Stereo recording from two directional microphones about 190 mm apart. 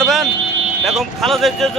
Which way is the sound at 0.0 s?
Centre (ahead or behind).